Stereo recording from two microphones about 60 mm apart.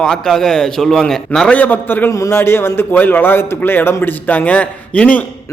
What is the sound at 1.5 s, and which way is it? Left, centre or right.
A man's voice, left.